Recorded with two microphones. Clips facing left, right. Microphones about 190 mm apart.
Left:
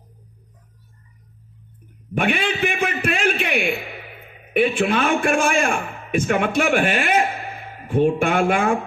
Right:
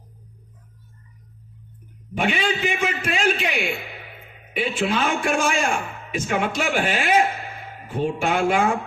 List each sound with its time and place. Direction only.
2.1 s a man's voice: 55° left (ahead or behind)